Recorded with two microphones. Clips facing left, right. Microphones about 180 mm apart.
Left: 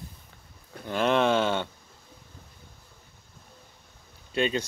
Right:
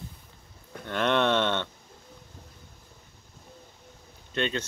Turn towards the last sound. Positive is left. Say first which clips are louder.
# left 3 dB
turn(degrees=10)  # may be behind; listen again after turning